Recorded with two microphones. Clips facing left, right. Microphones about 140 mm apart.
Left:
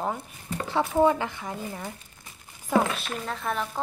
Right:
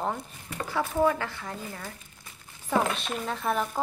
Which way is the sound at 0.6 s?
25° left (ahead or behind).